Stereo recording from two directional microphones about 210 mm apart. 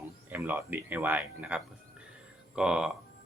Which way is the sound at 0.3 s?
10° right (ahead or behind).